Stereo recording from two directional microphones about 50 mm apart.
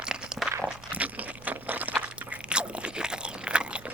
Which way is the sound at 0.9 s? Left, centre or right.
Right.